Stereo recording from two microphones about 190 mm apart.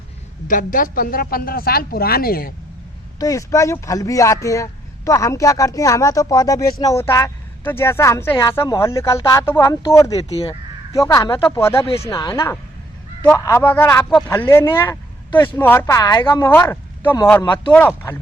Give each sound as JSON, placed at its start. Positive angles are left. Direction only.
{"t": 0.4, "sound": "a man's voice", "side_deg": 45}
{"t": 3.2, "sound": "speech", "side_deg": 15}